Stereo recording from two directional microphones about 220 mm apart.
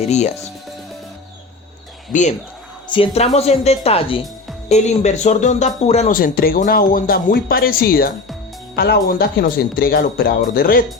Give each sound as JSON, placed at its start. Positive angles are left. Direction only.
{"t": 0.0, "sound": "speech", "side_deg": 30}
{"t": 2.1, "sound": "speech", "side_deg": 35}
{"t": 2.9, "sound": "speech", "side_deg": 25}